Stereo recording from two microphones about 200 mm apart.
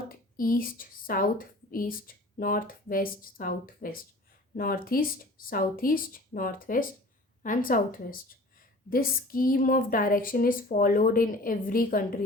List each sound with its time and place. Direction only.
0.3 s a woman's voice: 45° left (ahead or behind)